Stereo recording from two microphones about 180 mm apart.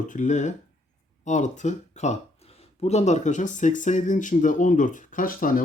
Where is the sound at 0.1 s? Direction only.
45° left (ahead or behind).